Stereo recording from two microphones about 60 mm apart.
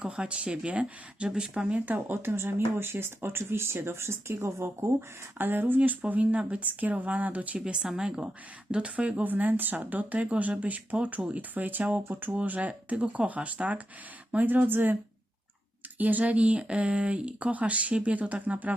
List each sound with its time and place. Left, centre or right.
0.0 s speech: centre
1.8 s speech: right
7.6 s speech: centre; by 12.3 s right
12.3 s speech: right
16.0 s speech: right